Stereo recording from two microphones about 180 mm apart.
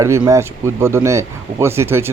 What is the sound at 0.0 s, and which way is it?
Speech, 15° right (ahead or behind).